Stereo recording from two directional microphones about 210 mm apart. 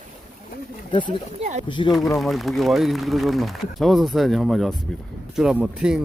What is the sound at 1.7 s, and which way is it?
Speech, 20° left (ahead or behind).